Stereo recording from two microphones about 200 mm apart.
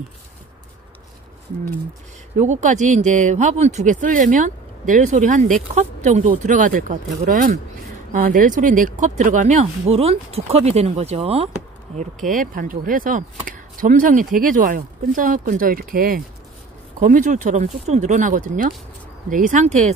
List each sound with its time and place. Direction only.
2.3 s speech: 35° right (ahead or behind)
12.0 s speech: 40° right (ahead or behind)